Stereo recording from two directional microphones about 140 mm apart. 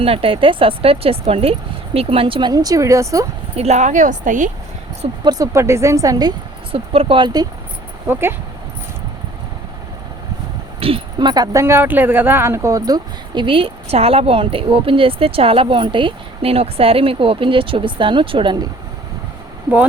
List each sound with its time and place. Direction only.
0.0 s speech: 40° right (ahead or behind)
2.5 s a woman's voice: 25° right (ahead or behind)
3.5 s speech: 50° right (ahead or behind); by 4.5 s 65° right (ahead or behind)
5.2 s a woman's voice: 25° right (ahead or behind)
6.7 s speech: 45° right (ahead or behind)
8.0 s speech: 15° right (ahead or behind)
10.8 s speech: 40° right (ahead or behind)